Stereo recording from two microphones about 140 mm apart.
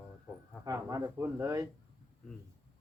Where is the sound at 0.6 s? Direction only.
25° right (ahead or behind).